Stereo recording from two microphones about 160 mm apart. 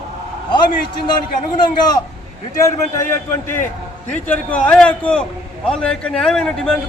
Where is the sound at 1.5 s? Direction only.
25° left (ahead or behind).